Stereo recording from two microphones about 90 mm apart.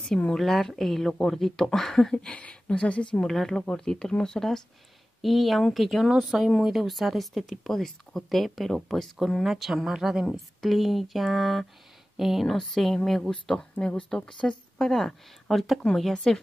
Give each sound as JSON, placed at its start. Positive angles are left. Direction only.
{"t": 0.0, "sound": "speech", "side_deg": 10}